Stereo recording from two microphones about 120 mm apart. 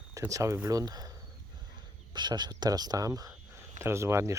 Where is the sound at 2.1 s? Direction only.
35° right (ahead or behind).